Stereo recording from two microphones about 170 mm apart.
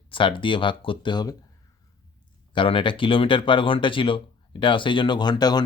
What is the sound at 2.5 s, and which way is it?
Speech, 30° left (ahead or behind).